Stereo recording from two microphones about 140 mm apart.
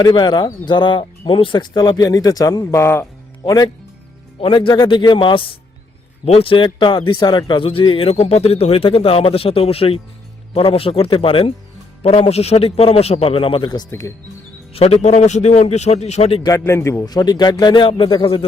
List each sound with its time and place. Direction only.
0.0 s speech: 35° left (ahead or behind); by 3.5 s 15° left (ahead or behind)
4.4 s a man's voice: 40° left (ahead or behind)
14.7 s a man's voice: 45° left (ahead or behind)
16.4 s speech: 20° left (ahead or behind); by 18.4 s 40° left (ahead or behind)